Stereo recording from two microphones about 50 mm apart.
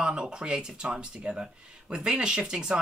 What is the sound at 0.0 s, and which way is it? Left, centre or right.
Speech, centre.